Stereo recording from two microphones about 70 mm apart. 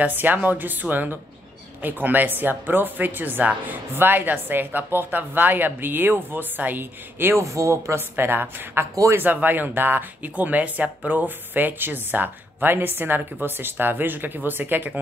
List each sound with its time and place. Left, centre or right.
0.0 s speech: right
7.4 s a woman's voice: right